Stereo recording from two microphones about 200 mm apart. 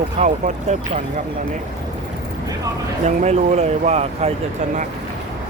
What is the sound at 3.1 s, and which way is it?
Speech, 35° right (ahead or behind).